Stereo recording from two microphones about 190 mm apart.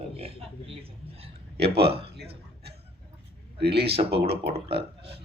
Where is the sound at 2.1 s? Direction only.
60° right (ahead or behind).